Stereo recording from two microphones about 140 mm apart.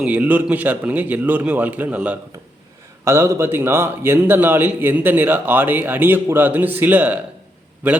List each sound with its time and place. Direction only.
0.0 s a man's voice: 10° right (ahead or behind)